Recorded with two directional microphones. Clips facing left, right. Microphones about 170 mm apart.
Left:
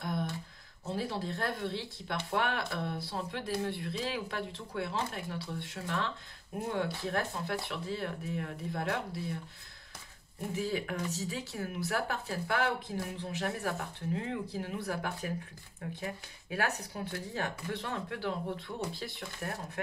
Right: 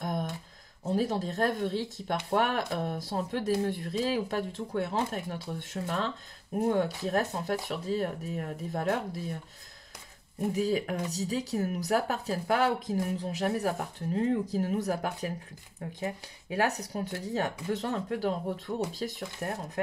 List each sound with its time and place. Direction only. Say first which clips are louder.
0.0 s a sound: right 2 dB; 45° right (ahead or behind)
0.8 s speech: right 6 dB; 45° right (ahead or behind)
10.5 s speech: right 5 dB; 40° right (ahead or behind)